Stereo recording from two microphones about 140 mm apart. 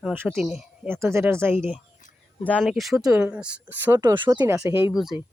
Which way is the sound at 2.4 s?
10° left (ahead or behind).